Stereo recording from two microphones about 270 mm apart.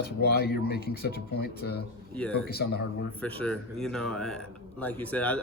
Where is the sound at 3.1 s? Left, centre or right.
Centre.